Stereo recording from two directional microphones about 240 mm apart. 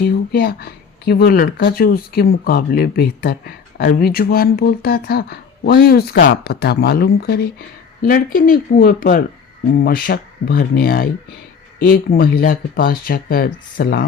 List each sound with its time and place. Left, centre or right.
0.0 s speech: left